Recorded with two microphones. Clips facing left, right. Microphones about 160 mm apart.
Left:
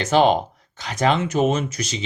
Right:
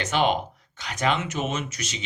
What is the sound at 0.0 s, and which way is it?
Speech, 35° left (ahead or behind).